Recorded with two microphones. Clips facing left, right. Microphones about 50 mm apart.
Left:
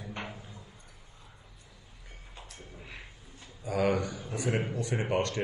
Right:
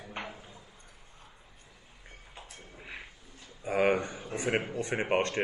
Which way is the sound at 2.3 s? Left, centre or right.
Right.